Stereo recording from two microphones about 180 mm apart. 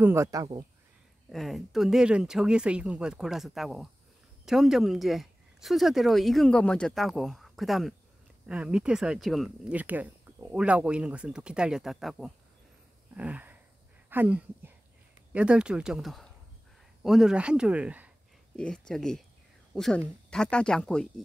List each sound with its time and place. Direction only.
0.0 s speech: 15° right (ahead or behind)
1.3 s speech: centre (ahead or behind)
13.1 s a sound: 10° right (ahead or behind)
14.1 s speech: 10° right (ahead or behind)
18.6 s speech: 5° left (ahead or behind)